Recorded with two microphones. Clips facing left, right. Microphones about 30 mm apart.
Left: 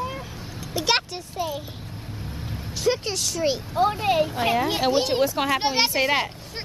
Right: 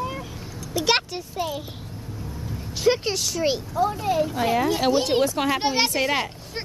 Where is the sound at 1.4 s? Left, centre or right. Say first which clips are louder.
Even; centre.